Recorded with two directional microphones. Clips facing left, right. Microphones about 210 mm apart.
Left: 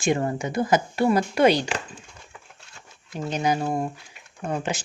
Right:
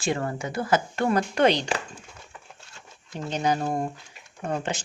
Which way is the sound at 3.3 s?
10° left (ahead or behind).